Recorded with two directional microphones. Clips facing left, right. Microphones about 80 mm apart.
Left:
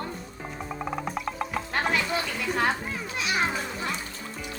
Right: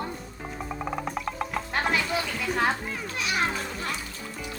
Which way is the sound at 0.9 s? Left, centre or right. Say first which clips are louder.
Even; centre.